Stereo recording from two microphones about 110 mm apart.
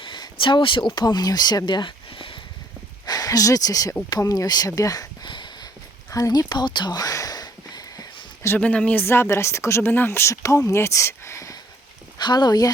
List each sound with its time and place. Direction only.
0.0 s speech: 45° left (ahead or behind)
3.1 s speech: 35° left (ahead or behind)
6.1 s a sound: 30° left (ahead or behind)
8.4 s speech: 10° left (ahead or behind)
12.2 s speech: 40° left (ahead or behind)